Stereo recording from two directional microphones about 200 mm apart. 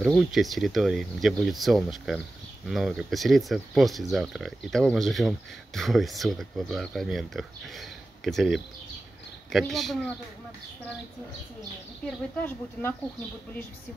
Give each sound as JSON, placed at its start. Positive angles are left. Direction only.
{"t": 0.0, "sound": "speech", "side_deg": 0}
{"t": 12.4, "sound": "speech", "side_deg": 10}